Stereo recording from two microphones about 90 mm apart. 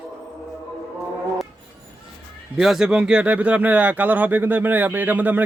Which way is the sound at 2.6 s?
5° right (ahead or behind).